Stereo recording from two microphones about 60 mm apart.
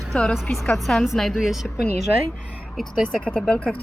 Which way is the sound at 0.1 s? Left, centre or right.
Centre.